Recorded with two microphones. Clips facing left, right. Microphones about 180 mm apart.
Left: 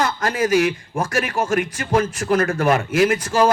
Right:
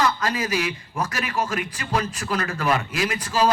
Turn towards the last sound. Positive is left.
turn(degrees=50)  # may be behind; listen again after turning